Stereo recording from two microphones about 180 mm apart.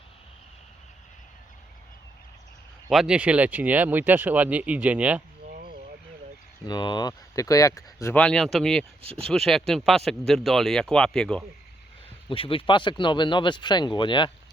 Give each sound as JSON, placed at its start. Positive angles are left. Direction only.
{"t": 2.9, "sound": "speech", "side_deg": -5}
{"t": 5.5, "sound": "a sound", "side_deg": -60}
{"t": 6.7, "sound": "speech", "side_deg": 25}
{"t": 9.0, "sound": "speech", "side_deg": -30}
{"t": 9.2, "sound": "speech", "side_deg": 0}
{"t": 12.3, "sound": "speech", "side_deg": 30}